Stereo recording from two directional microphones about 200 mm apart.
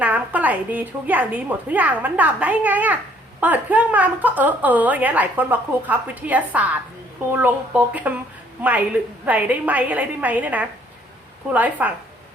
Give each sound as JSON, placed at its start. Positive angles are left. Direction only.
{"t": 0.0, "sound": "a woman's voice", "side_deg": -5}